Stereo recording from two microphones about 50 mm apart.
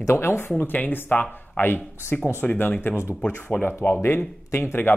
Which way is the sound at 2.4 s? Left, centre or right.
Left.